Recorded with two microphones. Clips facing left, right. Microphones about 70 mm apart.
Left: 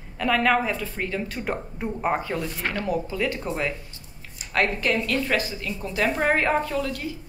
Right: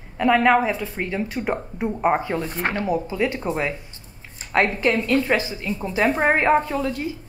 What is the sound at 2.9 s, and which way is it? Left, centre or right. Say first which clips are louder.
A woman's voice: right 1 dB; centre.